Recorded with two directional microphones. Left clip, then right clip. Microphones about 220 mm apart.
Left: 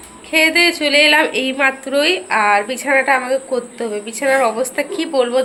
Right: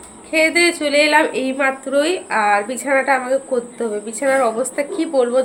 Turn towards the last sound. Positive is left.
turn(degrees=0)  # may be behind; listen again after turning